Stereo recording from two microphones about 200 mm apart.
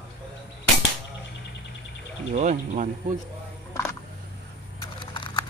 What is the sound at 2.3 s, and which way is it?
Speech, 40° right (ahead or behind).